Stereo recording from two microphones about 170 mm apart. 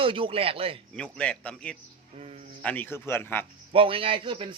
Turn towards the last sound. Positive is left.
turn(degrees=-30)  # may be behind; listen again after turning